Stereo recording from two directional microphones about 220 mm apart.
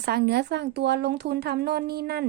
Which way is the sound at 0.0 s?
50° right (ahead or behind).